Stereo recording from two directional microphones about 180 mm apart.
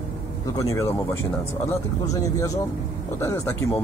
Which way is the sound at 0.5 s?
15° left (ahead or behind).